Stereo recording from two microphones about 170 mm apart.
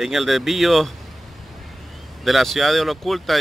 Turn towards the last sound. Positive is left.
turn(degrees=0)  # may be behind; listen again after turning